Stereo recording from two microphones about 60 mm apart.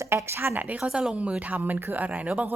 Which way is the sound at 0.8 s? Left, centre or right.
Centre.